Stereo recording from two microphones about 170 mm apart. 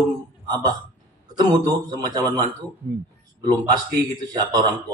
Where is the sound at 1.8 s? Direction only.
20° right (ahead or behind).